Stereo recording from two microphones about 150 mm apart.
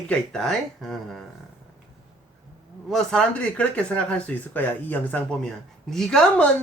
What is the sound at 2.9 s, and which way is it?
Speech, 5° left (ahead or behind).